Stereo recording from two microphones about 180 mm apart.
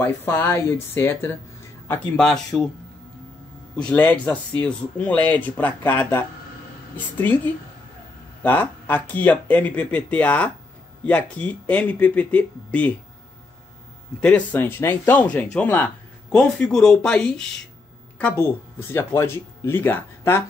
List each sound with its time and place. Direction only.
0.0 s a man's voice: 10° left (ahead or behind)
3.7 s speech: 5° left (ahead or behind)
14.2 s speech: 10° left (ahead or behind)